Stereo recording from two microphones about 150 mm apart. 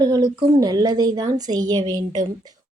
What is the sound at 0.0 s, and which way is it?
A woman's voice, 25° right (ahead or behind).